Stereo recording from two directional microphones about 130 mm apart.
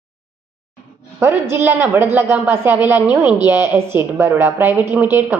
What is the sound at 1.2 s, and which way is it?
A woman's voice, 20° right (ahead or behind).